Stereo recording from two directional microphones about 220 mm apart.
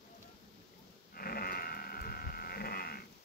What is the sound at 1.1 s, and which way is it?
Sheep, 45° left (ahead or behind).